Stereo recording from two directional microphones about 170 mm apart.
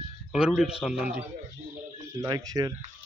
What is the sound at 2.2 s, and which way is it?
Speech, 20° right (ahead or behind).